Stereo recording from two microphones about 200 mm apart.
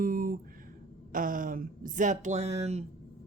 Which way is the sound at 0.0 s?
45° right (ahead or behind).